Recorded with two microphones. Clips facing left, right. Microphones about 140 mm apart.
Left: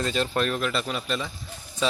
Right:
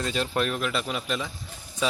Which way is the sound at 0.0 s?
5° right (ahead or behind).